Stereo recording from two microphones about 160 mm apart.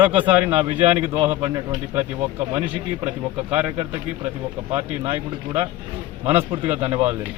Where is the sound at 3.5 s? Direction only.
15° right (ahead or behind).